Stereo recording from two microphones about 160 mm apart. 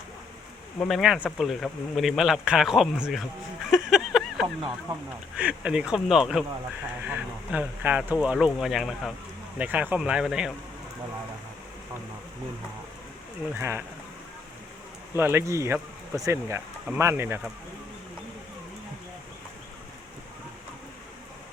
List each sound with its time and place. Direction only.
0.8 s speech: centre (ahead or behind)
3.7 s a sound: 5° right (ahead or behind)
5.4 s speech: 5° right (ahead or behind)
13.5 s speech: 15° right (ahead or behind)
15.1 s speech: 15° right (ahead or behind)